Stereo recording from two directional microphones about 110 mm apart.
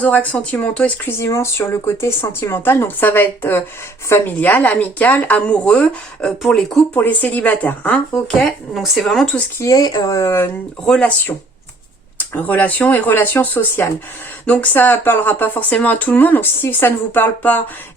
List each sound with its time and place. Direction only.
0.0 s speech: 15° left (ahead or behind)
6.9 s speech: 15° left (ahead or behind)
9.6 s speech: 30° left (ahead or behind)
10.8 s speech: 10° left (ahead or behind)
12.3 s speech: 15° left (ahead or behind)